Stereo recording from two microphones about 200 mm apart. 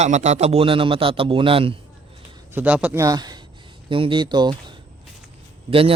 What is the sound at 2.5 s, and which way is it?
A man's voice, 10° right (ahead or behind).